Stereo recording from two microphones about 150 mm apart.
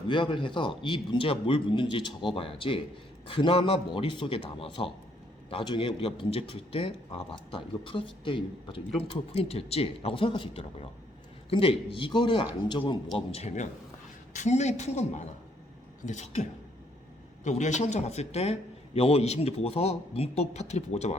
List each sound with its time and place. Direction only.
0.1 s a man's voice: 35° left (ahead or behind)
13.1 s a man's voice: 45° left (ahead or behind)